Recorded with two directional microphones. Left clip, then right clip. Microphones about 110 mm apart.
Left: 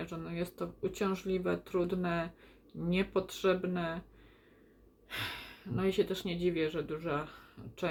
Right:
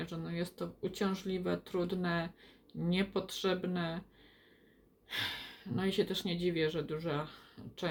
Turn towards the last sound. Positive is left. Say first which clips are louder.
# left 1 dB
turn(degrees=10)  # may be behind; listen again after turning